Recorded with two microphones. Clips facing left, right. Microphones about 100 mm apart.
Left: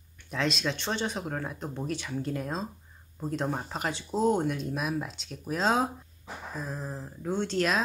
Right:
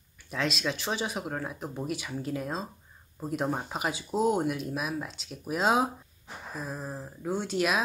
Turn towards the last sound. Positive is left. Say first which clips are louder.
# even
turn(degrees=-10)  # may be behind; listen again after turning